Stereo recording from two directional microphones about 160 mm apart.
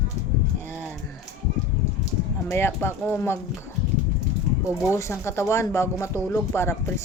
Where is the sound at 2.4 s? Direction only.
15° left (ahead or behind).